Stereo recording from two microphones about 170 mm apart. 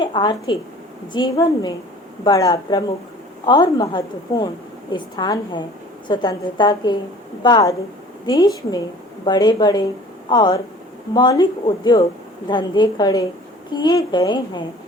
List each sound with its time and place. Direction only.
0.0 s a woman's voice: 30° left (ahead or behind)